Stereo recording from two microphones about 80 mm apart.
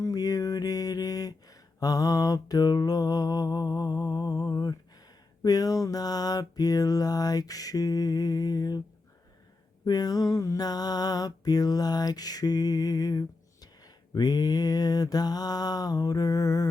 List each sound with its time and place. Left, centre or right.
0.0 s mantra: left
9.8 s mantra: left